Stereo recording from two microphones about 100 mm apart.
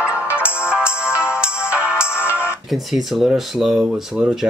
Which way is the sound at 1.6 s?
25° left (ahead or behind).